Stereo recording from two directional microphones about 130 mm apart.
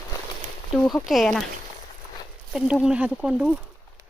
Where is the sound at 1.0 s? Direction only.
Centre (ahead or behind).